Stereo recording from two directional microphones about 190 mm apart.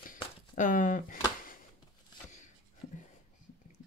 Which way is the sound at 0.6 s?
45° left (ahead or behind).